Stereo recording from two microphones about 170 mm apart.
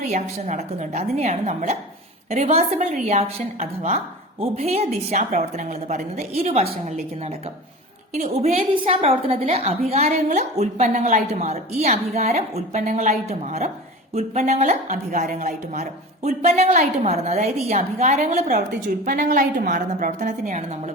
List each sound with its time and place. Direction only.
0.0 s a woman's voice: 40° right (ahead or behind)